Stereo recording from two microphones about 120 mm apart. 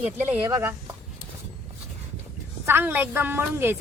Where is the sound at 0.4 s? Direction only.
20° right (ahead or behind).